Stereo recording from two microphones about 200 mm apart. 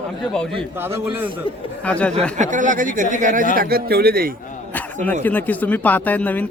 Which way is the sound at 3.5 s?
50° right (ahead or behind).